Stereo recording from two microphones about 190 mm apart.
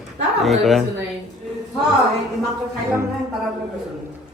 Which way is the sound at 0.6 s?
Centre (ahead or behind).